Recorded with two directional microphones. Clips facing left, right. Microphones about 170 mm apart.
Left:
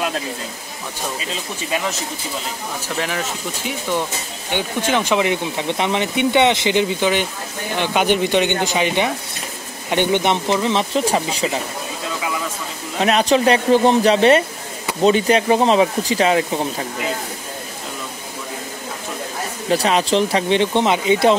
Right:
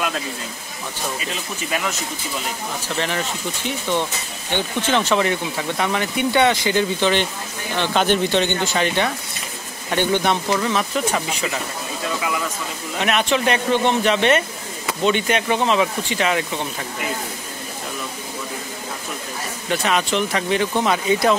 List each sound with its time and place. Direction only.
3.0 s speech: 5° left (ahead or behind); by 11.6 s 30° left (ahead or behind)
13.0 s speech: 35° left (ahead or behind)
19.7 s speech: 30° left (ahead or behind)